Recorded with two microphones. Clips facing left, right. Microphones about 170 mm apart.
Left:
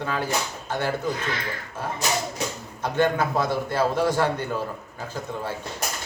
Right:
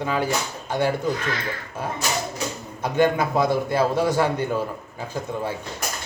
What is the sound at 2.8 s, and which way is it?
Speech, 10° right (ahead or behind).